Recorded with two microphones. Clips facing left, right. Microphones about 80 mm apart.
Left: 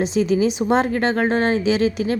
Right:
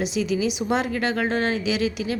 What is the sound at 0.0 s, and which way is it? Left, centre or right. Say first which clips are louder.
A woman's voice: left 5 dB; left.